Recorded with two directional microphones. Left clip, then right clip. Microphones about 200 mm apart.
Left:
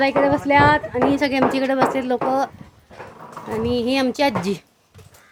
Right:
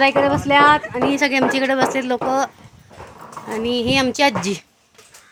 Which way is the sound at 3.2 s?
50° right (ahead or behind).